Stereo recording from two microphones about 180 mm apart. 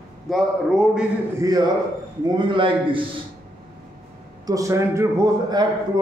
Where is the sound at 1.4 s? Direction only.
20° right (ahead or behind).